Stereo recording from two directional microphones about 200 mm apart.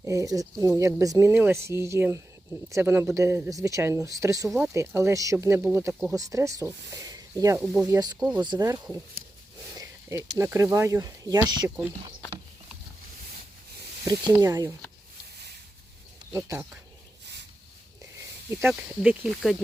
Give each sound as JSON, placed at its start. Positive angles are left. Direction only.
{"t": 0.0, "sound": "speech", "side_deg": -15}
{"t": 5.9, "sound": "speech", "side_deg": 0}
{"t": 6.1, "sound": "speech", "side_deg": -15}
{"t": 14.0, "sound": "speech", "side_deg": -15}
{"t": 16.3, "sound": "speech", "side_deg": -15}
{"t": 18.6, "sound": "speech", "side_deg": -5}